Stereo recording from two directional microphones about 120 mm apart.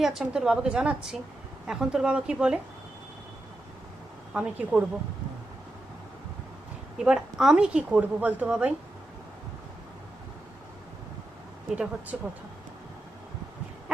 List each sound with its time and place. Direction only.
0.0 s a woman's voice: 5° right (ahead or behind)
4.4 s a woman's voice: 10° right (ahead or behind)
7.0 s a woman's voice: 5° right (ahead or behind)
11.7 s a woman's voice: 10° right (ahead or behind)